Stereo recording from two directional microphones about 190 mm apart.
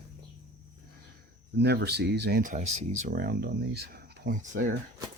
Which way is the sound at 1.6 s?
60° right (ahead or behind).